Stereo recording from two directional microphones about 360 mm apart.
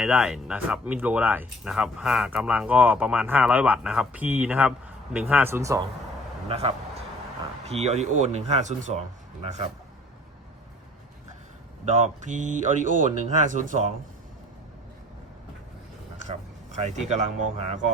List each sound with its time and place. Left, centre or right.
0.0 s speech: centre
11.9 s speech: centre
16.7 s speech: centre